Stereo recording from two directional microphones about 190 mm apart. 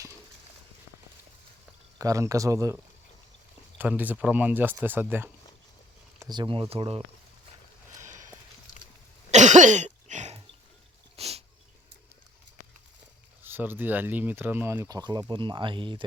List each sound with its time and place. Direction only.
2.0 s speech: 15° right (ahead or behind)
3.8 s speech: 10° right (ahead or behind)
6.1 s speech: 20° right (ahead or behind)
8.0 s sniff: 40° right (ahead or behind)
9.3 s cough: 40° right (ahead or behind)
11.2 s sneeze: 35° right (ahead or behind)
13.4 s speech: 10° right (ahead or behind)